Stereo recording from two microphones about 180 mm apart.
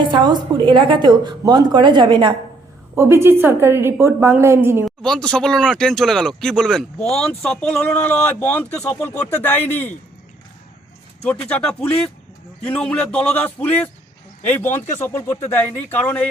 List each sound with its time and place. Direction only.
0.0 s a woman's voice: 25° right (ahead or behind)
2.9 s a woman's voice: 15° right (ahead or behind)
4.9 s speech: 5° left (ahead or behind)
11.4 s speech: 5° left (ahead or behind)